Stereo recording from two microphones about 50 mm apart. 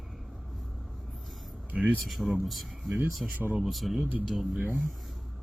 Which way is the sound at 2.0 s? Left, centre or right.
Centre.